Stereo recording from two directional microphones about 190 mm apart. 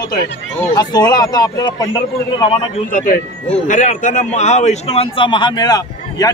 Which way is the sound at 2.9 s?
45° left (ahead or behind).